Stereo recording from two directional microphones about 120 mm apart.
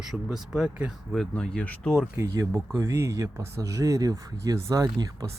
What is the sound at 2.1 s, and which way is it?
Speech, 25° right (ahead or behind).